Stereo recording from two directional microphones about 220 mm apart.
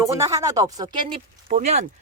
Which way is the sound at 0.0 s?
15° right (ahead or behind).